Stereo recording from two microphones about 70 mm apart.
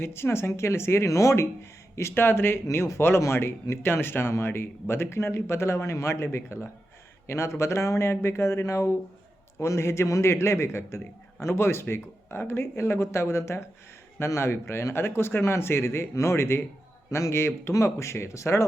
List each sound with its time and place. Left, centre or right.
0.0 s a man's voice: left
2.0 s a man's voice: left